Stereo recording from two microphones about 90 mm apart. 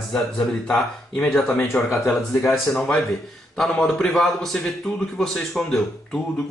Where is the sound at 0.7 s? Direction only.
10° left (ahead or behind).